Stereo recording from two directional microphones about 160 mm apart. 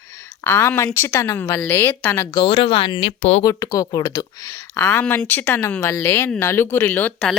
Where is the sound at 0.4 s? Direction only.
10° left (ahead or behind).